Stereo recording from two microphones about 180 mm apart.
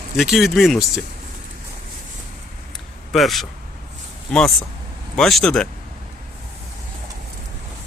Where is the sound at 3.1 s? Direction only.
Centre (ahead or behind).